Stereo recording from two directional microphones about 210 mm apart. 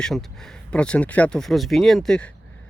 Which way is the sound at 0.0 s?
Centre (ahead or behind).